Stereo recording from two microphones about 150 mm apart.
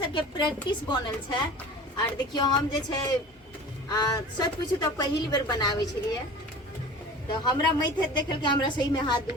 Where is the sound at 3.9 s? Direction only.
25° left (ahead or behind).